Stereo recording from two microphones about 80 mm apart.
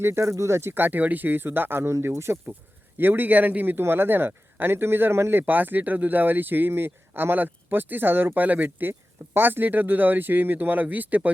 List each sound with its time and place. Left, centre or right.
0.0 s speech: right